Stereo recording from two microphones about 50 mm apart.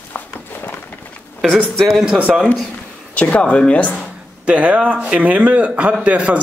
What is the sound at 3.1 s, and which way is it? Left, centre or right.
Speech, left.